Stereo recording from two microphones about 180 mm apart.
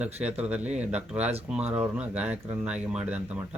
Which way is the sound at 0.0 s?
5° right (ahead or behind).